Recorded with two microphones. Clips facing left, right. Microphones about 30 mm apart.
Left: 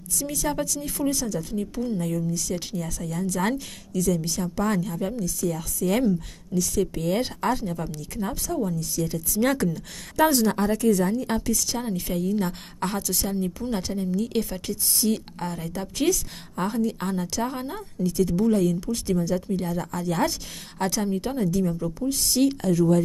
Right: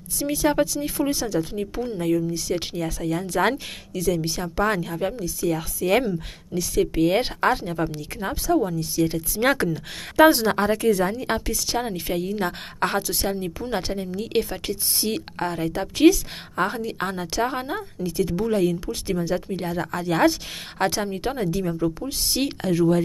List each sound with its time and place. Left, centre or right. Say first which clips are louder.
0.2 s speech: right 6 dB; right